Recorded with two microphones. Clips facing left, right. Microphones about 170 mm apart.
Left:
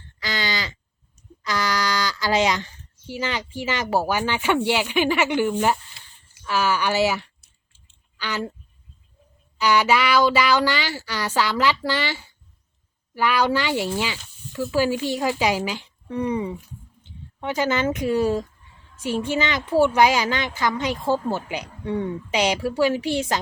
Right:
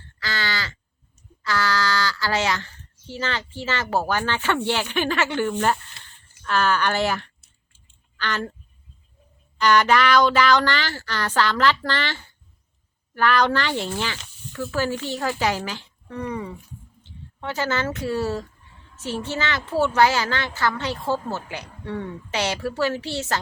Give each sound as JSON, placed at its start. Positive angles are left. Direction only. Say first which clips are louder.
{"t": 0.2, "sound": "a sound", "louder": "left 1 dB", "side_deg": 20}
{"t": 1.4, "sound": "a child's voice", "louder": "right 1 dB", "side_deg": 20}
{"t": 9.6, "sound": "a child's voice", "louder": "right 1 dB", "side_deg": 10}